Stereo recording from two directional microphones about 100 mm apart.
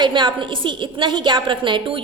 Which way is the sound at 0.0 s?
50° right (ahead or behind).